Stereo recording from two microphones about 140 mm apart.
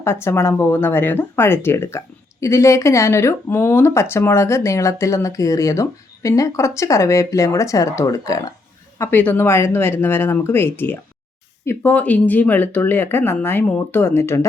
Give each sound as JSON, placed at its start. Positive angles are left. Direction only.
{"t": 0.0, "sound": "speech", "side_deg": 20}
{"t": 9.0, "sound": "speech", "side_deg": 15}